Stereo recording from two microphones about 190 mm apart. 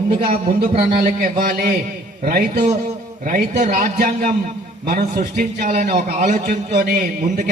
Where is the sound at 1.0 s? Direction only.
50° right (ahead or behind).